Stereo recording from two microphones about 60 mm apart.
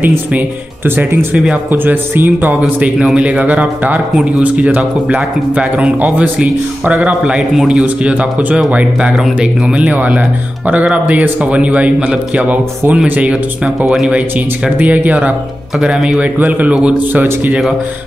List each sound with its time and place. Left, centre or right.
1.7 s music: right
3.2 s a man's voice: right
7.2 s speech: centre
7.8 s a man's voice: right
9.1 s speech: centre
9.8 s a man's voice: right
13.7 s speech: centre
14.8 s a man's voice: right
15.8 s speech: centre
16.2 s a man's voice: right
17.1 s music: right